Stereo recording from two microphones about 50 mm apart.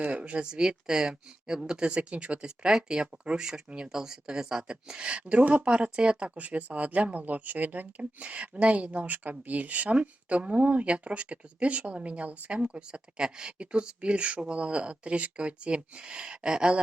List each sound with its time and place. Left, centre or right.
0.0 s speech: right